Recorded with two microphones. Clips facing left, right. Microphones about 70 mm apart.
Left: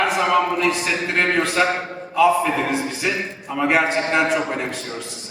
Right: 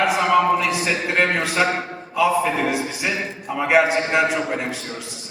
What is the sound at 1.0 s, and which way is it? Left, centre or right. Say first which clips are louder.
A man's voice: left 2 dB; centre.